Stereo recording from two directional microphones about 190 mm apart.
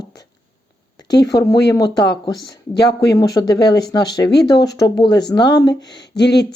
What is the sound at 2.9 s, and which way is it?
Speech, 20° left (ahead or behind).